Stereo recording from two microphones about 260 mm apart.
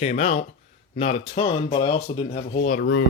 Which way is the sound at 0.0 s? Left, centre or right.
Left.